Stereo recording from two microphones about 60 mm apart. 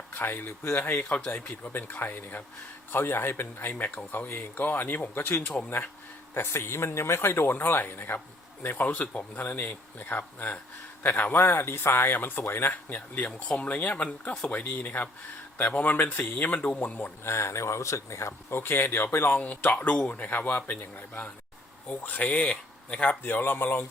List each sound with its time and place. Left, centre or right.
0.1 s speech: left
1.0 s speech: centre
1.6 s speech: left
2.9 s speech: left
8.7 s speech: left
17.2 s speech: left
18.5 s speech: left
19.4 s speech: left